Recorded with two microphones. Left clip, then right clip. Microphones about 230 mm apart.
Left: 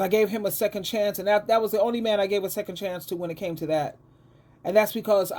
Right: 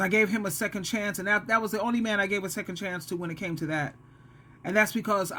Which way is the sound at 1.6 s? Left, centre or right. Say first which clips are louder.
Left 6 dB; centre.